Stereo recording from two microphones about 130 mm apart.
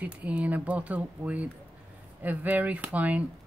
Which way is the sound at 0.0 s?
10° right (ahead or behind).